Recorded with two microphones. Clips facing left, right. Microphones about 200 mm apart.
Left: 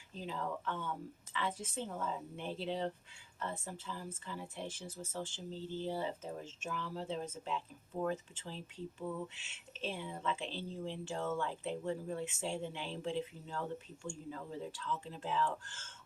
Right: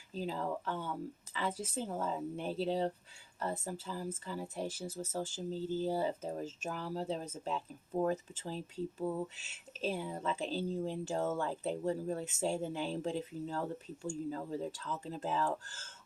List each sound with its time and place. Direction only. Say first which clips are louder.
0.1 s speech: right 4 dB; 35° right (ahead or behind)